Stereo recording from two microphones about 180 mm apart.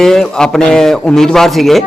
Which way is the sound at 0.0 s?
5° left (ahead or behind).